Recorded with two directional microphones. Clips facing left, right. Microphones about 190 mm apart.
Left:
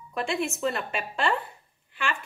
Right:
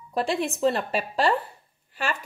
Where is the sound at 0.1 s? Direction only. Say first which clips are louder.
Right 3 dB; 35° right (ahead or behind).